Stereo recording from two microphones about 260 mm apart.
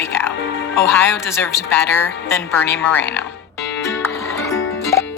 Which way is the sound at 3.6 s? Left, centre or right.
Left.